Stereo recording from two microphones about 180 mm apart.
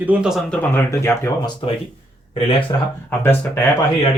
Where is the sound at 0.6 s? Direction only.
15° left (ahead or behind).